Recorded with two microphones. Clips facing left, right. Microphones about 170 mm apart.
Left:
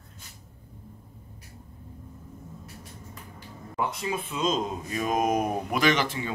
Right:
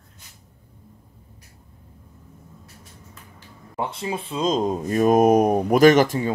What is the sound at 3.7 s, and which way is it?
Speech, 30° right (ahead or behind).